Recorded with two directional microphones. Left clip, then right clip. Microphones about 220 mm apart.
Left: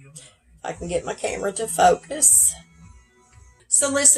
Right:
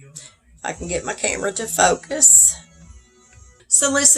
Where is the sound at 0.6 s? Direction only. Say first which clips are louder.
Right 1 dB; 20° right (ahead or behind).